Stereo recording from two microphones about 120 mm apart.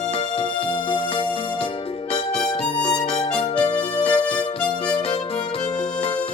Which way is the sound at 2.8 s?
40° left (ahead or behind).